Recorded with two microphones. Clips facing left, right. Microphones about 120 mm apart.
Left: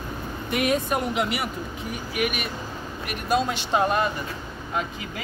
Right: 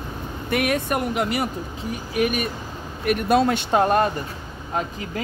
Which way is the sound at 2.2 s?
35° right (ahead or behind).